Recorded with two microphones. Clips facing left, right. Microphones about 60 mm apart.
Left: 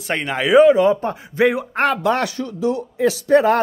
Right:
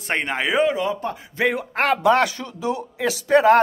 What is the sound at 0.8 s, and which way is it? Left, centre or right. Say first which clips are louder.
Speech: left 8 dB; left.